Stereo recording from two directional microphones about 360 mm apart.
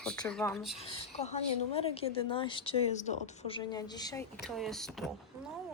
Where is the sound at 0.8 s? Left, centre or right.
Centre.